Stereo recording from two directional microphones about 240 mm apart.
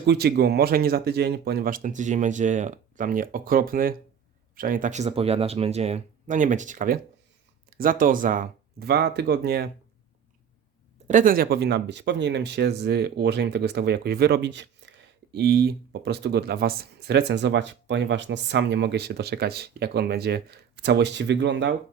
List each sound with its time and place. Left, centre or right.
0.0 s speech: right
11.1 s speech: right